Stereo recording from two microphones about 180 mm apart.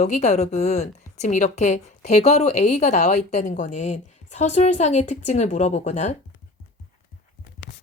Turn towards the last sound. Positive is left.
turn(degrees=40)  # may be behind; listen again after turning